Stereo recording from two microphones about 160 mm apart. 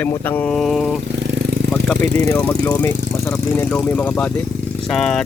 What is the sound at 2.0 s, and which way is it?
Speech, 50° right (ahead or behind).